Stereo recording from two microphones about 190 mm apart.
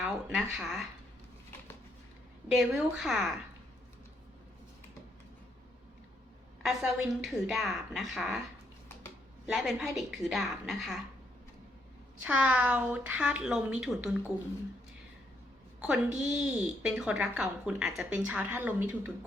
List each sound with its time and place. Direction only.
0.0 s speech: 5° right (ahead or behind)
2.5 s speech: centre (ahead or behind)
6.6 s speech: 5° right (ahead or behind)
9.5 s speech: centre (ahead or behind)
12.2 s a woman's voice: 5° right (ahead or behind)
16.0 s a woman's voice: 40° right (ahead or behind)
16.3 s a woman's voice: 5° right (ahead or behind)